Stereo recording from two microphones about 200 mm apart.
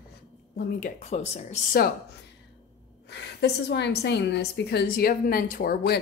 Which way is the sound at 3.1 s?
55° left (ahead or behind).